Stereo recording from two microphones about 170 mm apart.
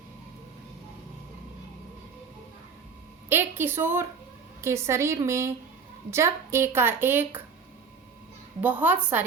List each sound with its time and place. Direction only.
3.2 s a woman's voice: 10° right (ahead or behind)
8.6 s a woman's voice: 10° right (ahead or behind)